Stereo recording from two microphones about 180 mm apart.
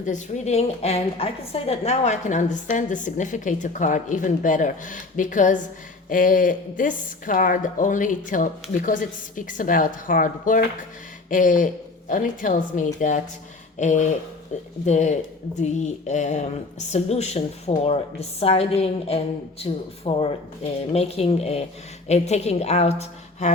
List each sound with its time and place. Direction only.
0.0 s a woman's voice: 40° left (ahead or behind)